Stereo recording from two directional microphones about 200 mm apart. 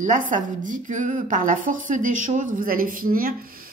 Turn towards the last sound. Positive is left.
turn(degrees=-45)  # may be behind; listen again after turning